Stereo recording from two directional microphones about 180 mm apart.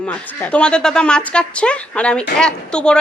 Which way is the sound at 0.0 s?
10° left (ahead or behind).